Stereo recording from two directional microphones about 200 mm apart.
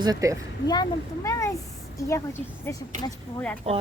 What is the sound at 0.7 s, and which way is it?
Speech, 20° left (ahead or behind).